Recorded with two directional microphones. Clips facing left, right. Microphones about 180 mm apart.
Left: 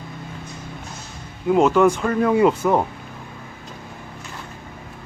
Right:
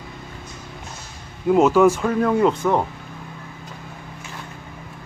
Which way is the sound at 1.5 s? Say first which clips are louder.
Right 1 dB; centre (ahead or behind).